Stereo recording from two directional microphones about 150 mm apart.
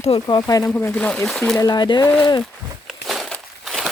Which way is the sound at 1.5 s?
25° left (ahead or behind).